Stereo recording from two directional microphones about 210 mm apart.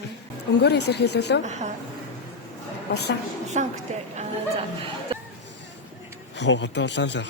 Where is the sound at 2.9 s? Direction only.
50° left (ahead or behind).